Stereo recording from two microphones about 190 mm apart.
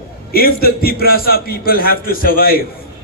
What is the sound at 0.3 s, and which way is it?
A man's voice, 50° left (ahead or behind).